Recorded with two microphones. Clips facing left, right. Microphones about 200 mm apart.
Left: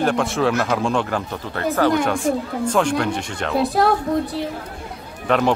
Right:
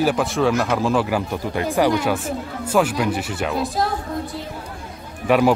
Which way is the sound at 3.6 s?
65° left (ahead or behind).